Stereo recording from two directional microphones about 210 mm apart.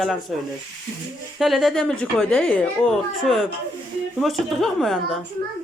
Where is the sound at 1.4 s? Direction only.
Centre (ahead or behind).